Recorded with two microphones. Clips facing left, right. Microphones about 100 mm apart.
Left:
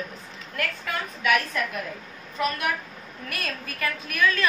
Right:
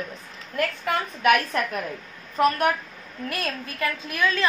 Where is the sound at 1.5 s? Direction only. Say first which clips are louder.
Right 3 dB; 50° right (ahead or behind).